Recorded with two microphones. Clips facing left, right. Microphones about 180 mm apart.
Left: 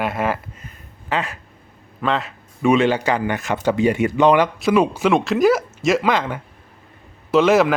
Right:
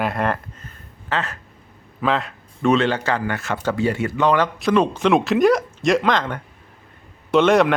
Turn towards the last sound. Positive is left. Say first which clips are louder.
# left 1 dB
turn(degrees=5)  # may be behind; listen again after turning